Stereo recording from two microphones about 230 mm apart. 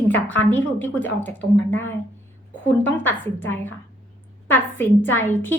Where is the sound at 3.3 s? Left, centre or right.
Centre.